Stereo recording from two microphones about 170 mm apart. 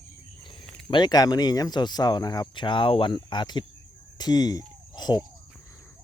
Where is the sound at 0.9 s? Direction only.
25° left (ahead or behind).